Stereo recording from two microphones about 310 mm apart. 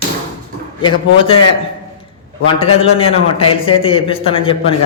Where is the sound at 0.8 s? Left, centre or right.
Centre.